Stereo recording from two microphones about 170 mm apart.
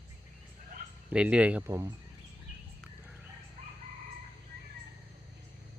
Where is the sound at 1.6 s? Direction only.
20° right (ahead or behind).